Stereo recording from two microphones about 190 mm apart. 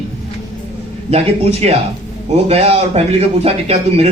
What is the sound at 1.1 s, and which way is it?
Speech, 35° right (ahead or behind).